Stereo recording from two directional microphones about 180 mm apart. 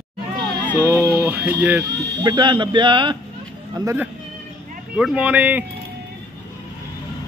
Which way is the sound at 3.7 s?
10° right (ahead or behind).